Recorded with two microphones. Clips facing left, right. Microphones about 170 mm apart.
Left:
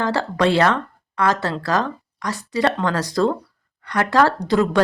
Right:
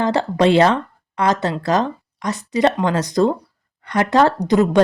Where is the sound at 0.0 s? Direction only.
20° right (ahead or behind).